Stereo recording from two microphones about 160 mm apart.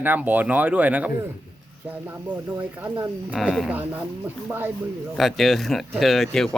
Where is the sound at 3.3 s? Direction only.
Centre (ahead or behind).